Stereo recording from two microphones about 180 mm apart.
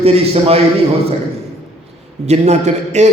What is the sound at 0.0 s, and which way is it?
Speech, 35° right (ahead or behind).